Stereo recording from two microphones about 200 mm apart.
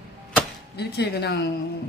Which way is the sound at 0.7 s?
55° left (ahead or behind).